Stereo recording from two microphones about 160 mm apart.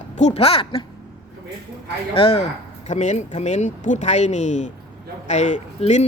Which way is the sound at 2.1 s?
35° left (ahead or behind).